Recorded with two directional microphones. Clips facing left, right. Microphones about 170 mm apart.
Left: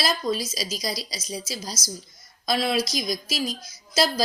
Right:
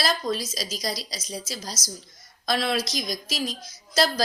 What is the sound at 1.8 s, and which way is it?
Speech, 20° right (ahead or behind).